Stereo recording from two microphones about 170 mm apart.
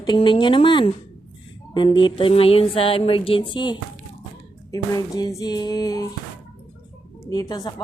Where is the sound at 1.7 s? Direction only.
25° left (ahead or behind).